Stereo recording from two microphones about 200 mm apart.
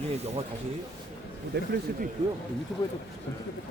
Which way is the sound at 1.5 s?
55° right (ahead or behind).